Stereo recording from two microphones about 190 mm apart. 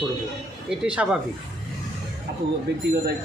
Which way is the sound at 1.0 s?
5° right (ahead or behind).